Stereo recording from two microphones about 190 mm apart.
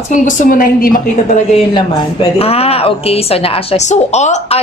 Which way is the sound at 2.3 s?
30° left (ahead or behind).